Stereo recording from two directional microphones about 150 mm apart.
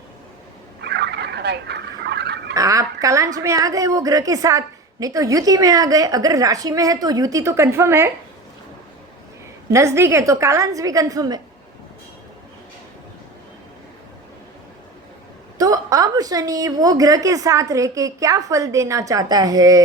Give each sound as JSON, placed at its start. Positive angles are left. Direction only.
{"t": 0.9, "sound": "turkey", "side_deg": -90}
{"t": 2.6, "sound": "a woman's voice", "side_deg": -20}
{"t": 9.6, "sound": "a woman's voice", "side_deg": -20}
{"t": 15.5, "sound": "a woman's voice", "side_deg": -25}